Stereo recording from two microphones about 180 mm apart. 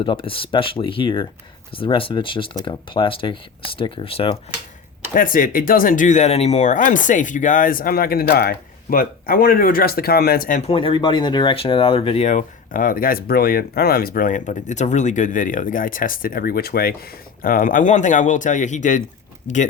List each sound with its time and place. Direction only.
0.0 s speech: 30° left (ahead or behind)
5.1 s speech: 50° left (ahead or behind)
10.6 s speech: 30° left (ahead or behind)